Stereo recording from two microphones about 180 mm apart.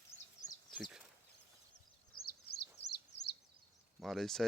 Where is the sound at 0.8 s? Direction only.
5° right (ahead or behind).